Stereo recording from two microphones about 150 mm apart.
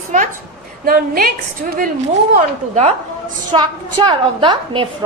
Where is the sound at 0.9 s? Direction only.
80° right.